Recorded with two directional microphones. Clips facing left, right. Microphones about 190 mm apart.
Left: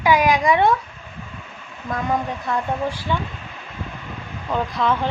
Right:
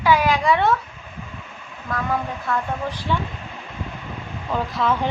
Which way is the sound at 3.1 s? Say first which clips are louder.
Right 2 dB; centre (ahead or behind).